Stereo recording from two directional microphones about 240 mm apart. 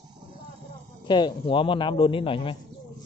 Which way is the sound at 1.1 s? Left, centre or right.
Centre.